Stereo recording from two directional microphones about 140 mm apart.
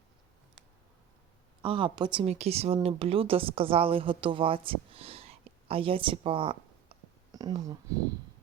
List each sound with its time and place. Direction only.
1.6 s speech: 35° right (ahead or behind)
2.2 s a woman's voice: 50° right (ahead or behind)
7.3 s speech: 25° right (ahead or behind)